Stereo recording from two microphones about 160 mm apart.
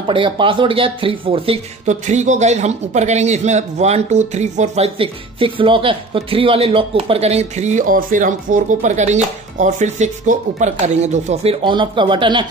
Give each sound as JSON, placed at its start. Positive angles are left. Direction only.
{"t": 0.0, "sound": "speech", "side_deg": -30}
{"t": 11.6, "sound": "a man's voice", "side_deg": -30}